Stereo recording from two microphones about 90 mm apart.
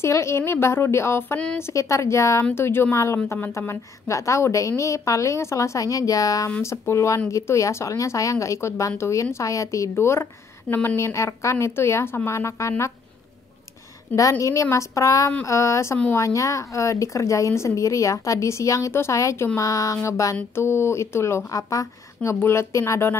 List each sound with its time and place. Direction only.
0.0 s speech: 30° left (ahead or behind)
10.7 s speech: 15° left (ahead or behind)
11.0 s speech: 35° left (ahead or behind)
14.4 s speech: 35° left (ahead or behind)